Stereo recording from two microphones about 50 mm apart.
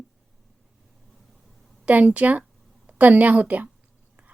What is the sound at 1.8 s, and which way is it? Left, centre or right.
Speech, right.